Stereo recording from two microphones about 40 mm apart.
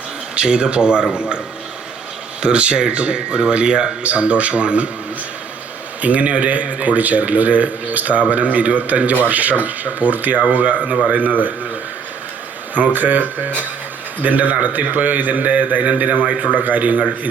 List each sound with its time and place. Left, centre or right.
0.4 s speech: right
2.4 s speech: right
6.0 s a man's voice: right
12.7 s a man's voice: right